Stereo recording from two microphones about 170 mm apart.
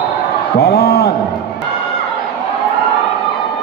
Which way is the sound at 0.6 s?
65° left (ahead or behind).